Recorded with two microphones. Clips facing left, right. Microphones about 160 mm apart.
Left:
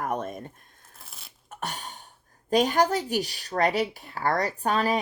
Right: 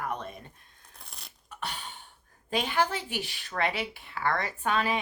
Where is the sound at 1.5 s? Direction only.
45° left (ahead or behind).